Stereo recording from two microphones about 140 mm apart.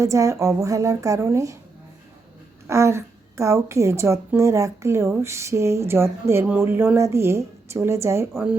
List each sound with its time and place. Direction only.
0.0 s a woman's voice: 20° right (ahead or behind)
2.6 s a woman's voice: 20° right (ahead or behind)